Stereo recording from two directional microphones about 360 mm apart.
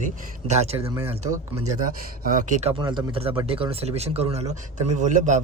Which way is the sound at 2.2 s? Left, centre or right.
Centre.